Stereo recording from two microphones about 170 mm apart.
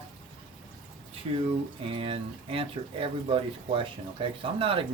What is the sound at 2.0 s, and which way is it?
Speech, 35° right (ahead or behind).